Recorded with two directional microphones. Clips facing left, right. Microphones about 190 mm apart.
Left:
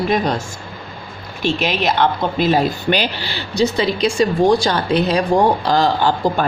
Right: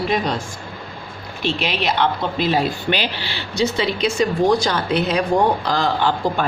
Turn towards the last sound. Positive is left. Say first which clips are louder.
# left 3 dB
turn(degrees=35)  # may be behind; listen again after turning